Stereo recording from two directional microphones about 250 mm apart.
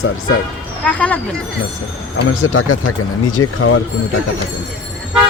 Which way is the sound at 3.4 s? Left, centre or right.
Left.